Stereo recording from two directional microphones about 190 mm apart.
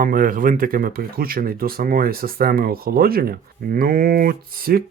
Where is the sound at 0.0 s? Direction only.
45° right (ahead or behind).